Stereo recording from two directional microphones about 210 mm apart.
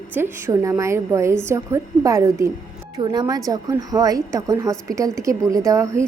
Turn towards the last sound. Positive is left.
turn(degrees=-15)  # may be behind; listen again after turning